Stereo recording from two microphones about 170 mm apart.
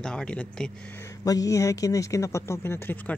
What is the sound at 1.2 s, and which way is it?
Speech, 20° left (ahead or behind).